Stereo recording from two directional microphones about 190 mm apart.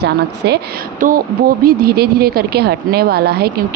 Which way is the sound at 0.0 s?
60° right (ahead or behind).